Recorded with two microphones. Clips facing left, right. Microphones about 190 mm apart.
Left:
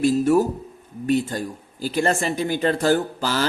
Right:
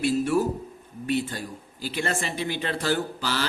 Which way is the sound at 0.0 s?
40° left (ahead or behind).